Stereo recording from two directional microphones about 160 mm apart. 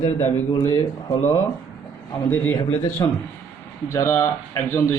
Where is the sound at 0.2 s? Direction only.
20° left (ahead or behind).